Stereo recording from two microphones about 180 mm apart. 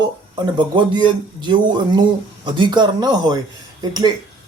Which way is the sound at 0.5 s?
25° right (ahead or behind).